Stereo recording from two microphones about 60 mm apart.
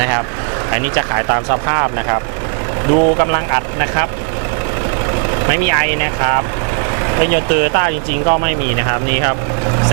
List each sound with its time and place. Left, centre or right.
0.7 s speech: right
5.3 s speech: right